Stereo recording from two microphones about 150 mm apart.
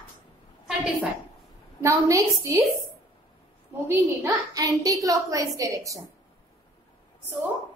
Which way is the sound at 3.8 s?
25° right (ahead or behind).